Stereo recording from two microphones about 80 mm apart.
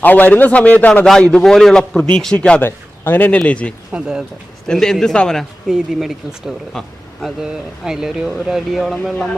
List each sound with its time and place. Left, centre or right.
0.0 s a man's voice: left
1.0 s a man's voice: centre
2.6 s speech: left
3.9 s speech: centre
4.6 s a man's voice: centre
5.7 s speech: centre